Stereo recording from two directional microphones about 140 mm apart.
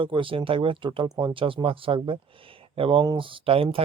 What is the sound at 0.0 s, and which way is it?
Speech, 35° right (ahead or behind).